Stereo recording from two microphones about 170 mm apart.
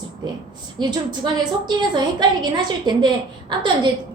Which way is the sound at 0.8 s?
25° right (ahead or behind).